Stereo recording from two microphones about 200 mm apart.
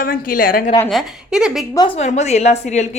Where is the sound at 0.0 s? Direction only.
45° left (ahead or behind).